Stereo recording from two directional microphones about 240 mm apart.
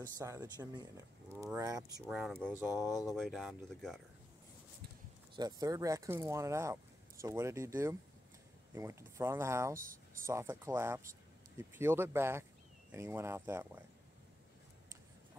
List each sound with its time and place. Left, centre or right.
0.2 s speech: centre
2.0 s speech: centre
5.3 s speech: centre
9.8 s speech: right
10.2 s speech: centre